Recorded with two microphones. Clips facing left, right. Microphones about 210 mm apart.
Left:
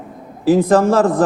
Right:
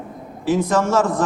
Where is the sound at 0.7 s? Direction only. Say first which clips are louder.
Left 4 dB; 35° left (ahead or behind).